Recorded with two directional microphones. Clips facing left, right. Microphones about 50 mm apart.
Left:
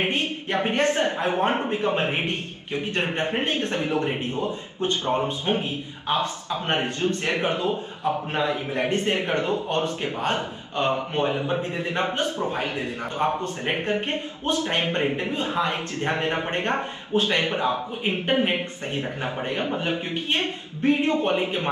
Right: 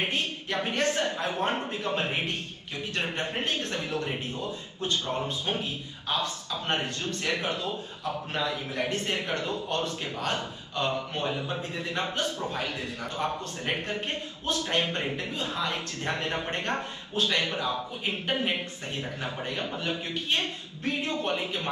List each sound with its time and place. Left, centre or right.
0.0 s a woman's voice: left